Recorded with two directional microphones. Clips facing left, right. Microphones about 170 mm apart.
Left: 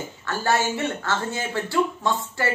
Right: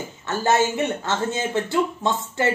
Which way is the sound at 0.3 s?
20° right (ahead or behind).